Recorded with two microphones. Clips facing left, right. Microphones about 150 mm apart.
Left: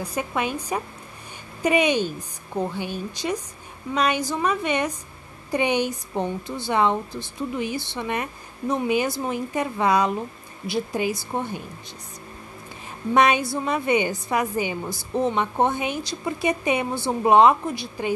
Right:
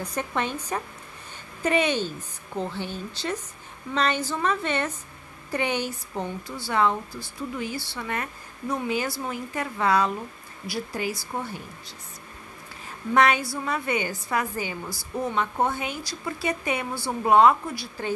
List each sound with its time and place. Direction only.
0.0 s a woman's voice: 10° left (ahead or behind)
13.1 s a woman's voice: 20° left (ahead or behind)